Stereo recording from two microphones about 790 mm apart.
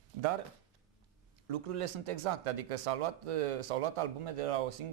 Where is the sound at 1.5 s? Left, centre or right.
Right.